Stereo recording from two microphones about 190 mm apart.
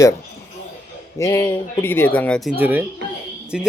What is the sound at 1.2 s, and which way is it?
Speech, 15° left (ahead or behind).